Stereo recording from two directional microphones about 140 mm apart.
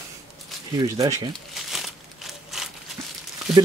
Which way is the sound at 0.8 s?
25° right (ahead or behind).